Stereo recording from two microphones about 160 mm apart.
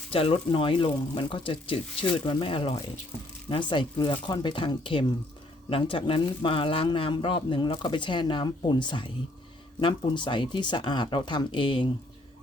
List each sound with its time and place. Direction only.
0.1 s speech: 35° left (ahead or behind)